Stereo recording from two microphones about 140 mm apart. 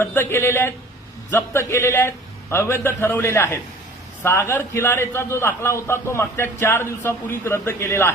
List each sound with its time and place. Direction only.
0.0 s a man's voice: 15° left (ahead or behind)